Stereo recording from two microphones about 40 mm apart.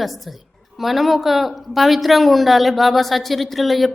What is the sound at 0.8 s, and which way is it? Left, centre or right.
A woman's voice, centre.